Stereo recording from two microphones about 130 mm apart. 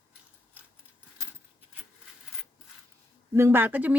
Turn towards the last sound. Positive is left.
turn(degrees=-15)  # may be behind; listen again after turning